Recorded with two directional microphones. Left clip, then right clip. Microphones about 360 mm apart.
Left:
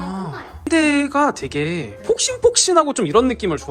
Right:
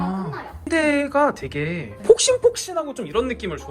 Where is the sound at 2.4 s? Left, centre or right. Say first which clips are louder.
Left 6 dB; centre.